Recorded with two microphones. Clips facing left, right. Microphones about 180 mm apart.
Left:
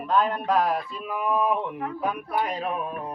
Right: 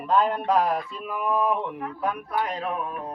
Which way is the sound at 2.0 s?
15° left (ahead or behind).